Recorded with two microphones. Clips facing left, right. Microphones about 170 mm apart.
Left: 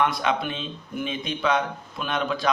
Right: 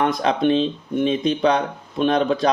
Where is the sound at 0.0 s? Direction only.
35° right (ahead or behind).